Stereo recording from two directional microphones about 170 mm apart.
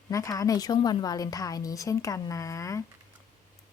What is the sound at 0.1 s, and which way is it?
A woman's voice, 20° left (ahead or behind).